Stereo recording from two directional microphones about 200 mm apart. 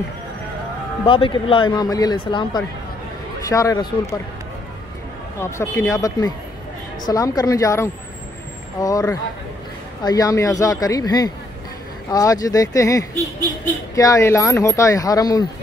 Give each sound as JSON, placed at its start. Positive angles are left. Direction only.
{"t": 1.0, "sound": "speech", "side_deg": 25}
{"t": 5.4, "sound": "speech", "side_deg": 15}